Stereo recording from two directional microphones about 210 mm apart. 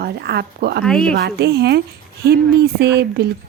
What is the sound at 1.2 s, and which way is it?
A woman's voice, 50° right (ahead or behind).